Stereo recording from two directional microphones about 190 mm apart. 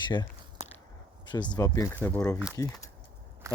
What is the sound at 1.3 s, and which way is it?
Speech, 25° left (ahead or behind).